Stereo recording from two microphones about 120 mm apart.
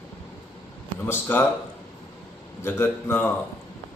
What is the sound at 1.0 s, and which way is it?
Speech, 15° left (ahead or behind).